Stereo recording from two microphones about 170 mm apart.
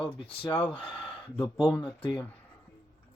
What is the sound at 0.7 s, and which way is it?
Speech, 25° left (ahead or behind).